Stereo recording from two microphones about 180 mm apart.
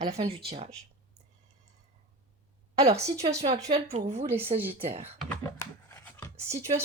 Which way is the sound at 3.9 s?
35° right (ahead or behind).